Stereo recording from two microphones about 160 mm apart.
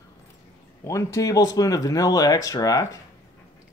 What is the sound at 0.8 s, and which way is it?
Speech, 20° left (ahead or behind).